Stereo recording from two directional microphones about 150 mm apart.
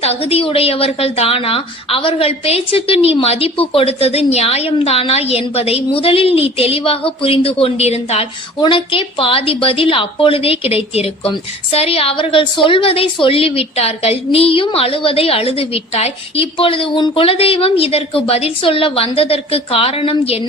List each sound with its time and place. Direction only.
0.0 s a woman's voice: 40° left (ahead or behind)